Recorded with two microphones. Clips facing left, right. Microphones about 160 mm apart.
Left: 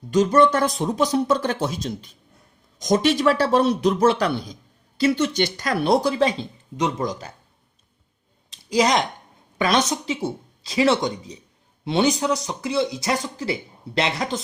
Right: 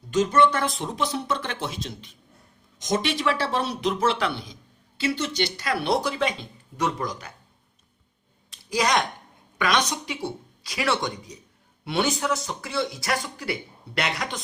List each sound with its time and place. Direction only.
0.1 s a man's voice: 40° left (ahead or behind)
6.7 s speech: 20° left (ahead or behind)
8.7 s speech: 25° left (ahead or behind)